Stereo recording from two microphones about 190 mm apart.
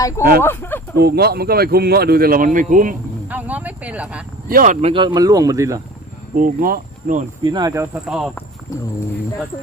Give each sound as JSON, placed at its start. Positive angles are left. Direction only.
{"t": 0.4, "sound": "speech", "side_deg": 10}
{"t": 0.9, "sound": "speech", "side_deg": -55}
{"t": 3.2, "sound": "speech", "side_deg": -10}
{"t": 4.4, "sound": "speech", "side_deg": -45}
{"t": 6.3, "sound": "speech", "side_deg": -45}
{"t": 7.4, "sound": "speech", "side_deg": -20}
{"t": 8.0, "sound": "speech", "side_deg": -5}